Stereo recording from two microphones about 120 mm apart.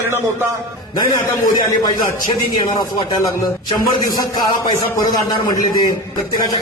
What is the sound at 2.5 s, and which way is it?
A man's voice, 35° left (ahead or behind).